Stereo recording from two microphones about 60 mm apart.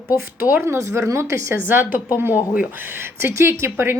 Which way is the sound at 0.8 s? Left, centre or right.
Right.